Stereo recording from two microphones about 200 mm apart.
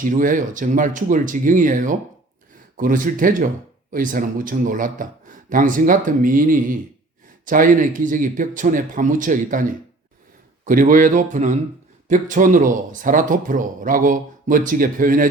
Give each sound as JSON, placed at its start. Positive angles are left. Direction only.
{"t": 0.0, "sound": "speech", "side_deg": -40}